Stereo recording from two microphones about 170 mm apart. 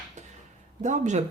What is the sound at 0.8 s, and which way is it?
Speech, 45° right (ahead or behind).